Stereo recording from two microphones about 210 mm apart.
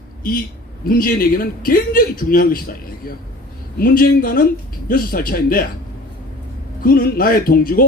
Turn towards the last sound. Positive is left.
turn(degrees=45)  # may be behind; listen again after turning